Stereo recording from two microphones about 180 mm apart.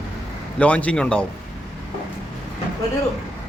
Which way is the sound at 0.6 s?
5° left (ahead or behind).